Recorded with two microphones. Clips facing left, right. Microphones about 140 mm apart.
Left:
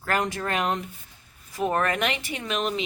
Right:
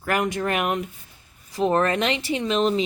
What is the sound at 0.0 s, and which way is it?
Speech, 15° right (ahead or behind).